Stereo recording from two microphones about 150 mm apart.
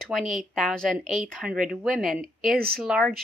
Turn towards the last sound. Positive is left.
turn(degrees=0)  # may be behind; listen again after turning